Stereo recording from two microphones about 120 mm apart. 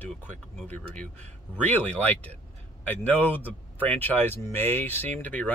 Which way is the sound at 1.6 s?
15° left (ahead or behind).